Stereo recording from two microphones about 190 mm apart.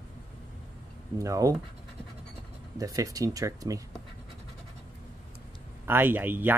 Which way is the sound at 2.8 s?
20° right (ahead or behind).